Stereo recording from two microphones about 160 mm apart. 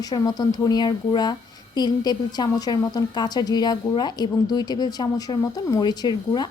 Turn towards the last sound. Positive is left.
turn(degrees=25)  # may be behind; listen again after turning